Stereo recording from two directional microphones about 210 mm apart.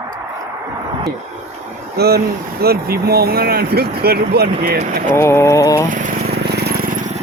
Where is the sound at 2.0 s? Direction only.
50° right (ahead or behind).